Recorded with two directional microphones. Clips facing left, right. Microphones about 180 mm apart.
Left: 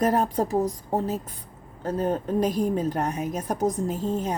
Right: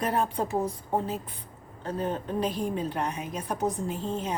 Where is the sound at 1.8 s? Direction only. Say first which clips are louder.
Left 5 dB; 40° left (ahead or behind).